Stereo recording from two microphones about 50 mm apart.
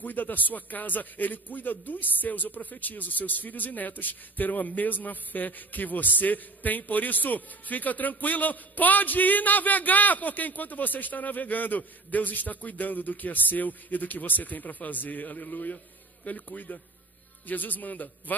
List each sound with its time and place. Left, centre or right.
0.0 s a man's voice: left